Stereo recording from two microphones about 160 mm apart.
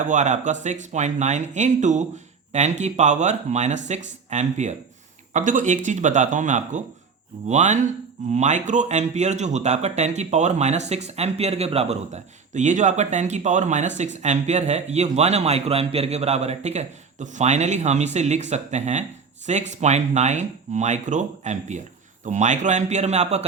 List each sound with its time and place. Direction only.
0.0 s speech: 50° right (ahead or behind)